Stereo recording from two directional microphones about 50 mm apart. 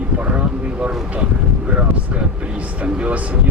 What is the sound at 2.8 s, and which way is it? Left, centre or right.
Speech, right.